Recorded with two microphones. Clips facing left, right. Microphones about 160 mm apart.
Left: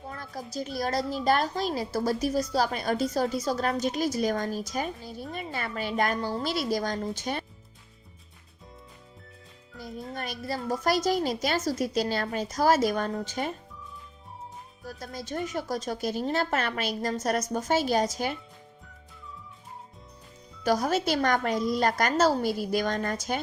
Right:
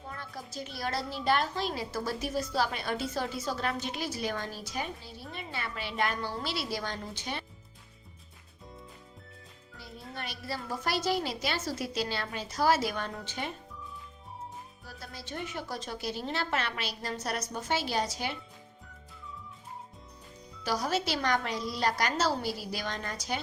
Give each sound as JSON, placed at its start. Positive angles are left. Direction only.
{"t": 0.1, "sound": "a woman's voice", "side_deg": 40}
{"t": 9.7, "sound": "speech", "side_deg": 45}
{"t": 14.8, "sound": "speech", "side_deg": 45}
{"t": 20.7, "sound": "speech", "side_deg": 50}